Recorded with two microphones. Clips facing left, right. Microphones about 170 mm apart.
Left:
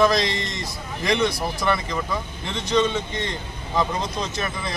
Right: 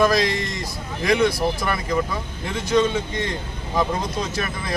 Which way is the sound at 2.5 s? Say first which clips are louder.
Right 2 dB; 5° right (ahead or behind).